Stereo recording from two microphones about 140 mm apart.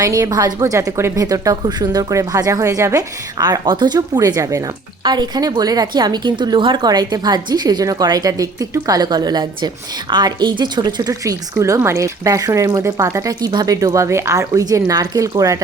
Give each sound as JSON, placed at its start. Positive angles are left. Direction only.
{"t": 0.0, "sound": "a woman's voice", "side_deg": -25}